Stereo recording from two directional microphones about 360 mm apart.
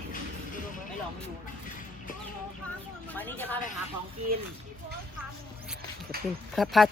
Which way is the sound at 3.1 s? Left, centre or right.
Centre.